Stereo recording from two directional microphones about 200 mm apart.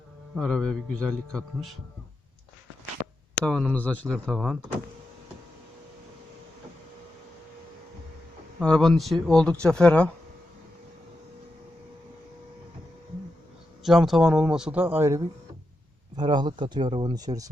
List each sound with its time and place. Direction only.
0.3 s a man's voice: 5° left (ahead or behind)
3.4 s a man's voice: 5° left (ahead or behind)
8.6 s a man's voice: 5° left (ahead or behind)
13.8 s a man's voice: centre (ahead or behind); by 17.5 s 20° right (ahead or behind)